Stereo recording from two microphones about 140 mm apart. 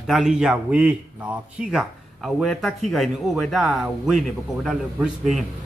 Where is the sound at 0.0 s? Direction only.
Centre (ahead or behind).